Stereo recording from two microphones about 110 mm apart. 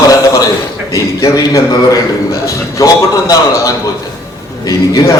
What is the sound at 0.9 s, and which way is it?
A man's voice, 30° left (ahead or behind).